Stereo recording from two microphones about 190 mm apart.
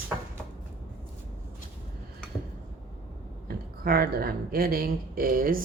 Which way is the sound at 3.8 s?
50° right (ahead or behind).